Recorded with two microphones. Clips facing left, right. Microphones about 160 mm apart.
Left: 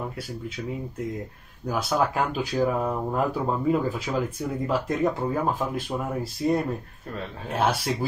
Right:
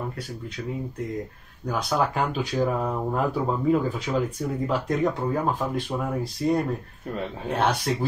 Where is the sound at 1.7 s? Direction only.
5° left (ahead or behind).